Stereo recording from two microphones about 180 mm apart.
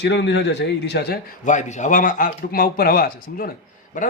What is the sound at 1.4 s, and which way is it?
A man's voice, 40° left (ahead or behind).